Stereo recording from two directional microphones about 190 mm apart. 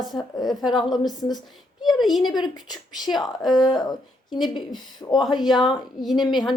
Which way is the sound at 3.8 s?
20° left (ahead or behind).